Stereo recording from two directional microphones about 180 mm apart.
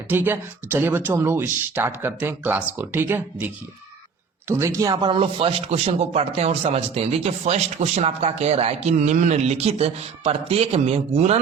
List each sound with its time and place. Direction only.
0.1 s a man's voice: 10° right (ahead or behind); by 11.3 s 35° right (ahead or behind)